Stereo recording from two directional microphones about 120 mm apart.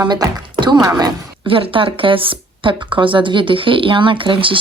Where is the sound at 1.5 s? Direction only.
45° right (ahead or behind).